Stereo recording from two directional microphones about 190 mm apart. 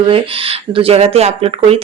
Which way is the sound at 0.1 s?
30° right (ahead or behind).